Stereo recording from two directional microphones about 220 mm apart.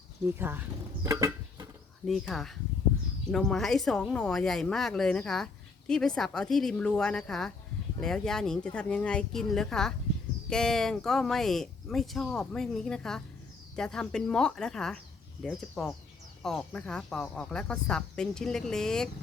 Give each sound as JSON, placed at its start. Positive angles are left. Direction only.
{"t": 0.3, "sound": "speech", "side_deg": -10}
{"t": 1.0, "sound": "a sound", "side_deg": -15}
{"t": 2.0, "sound": "speech", "side_deg": 0}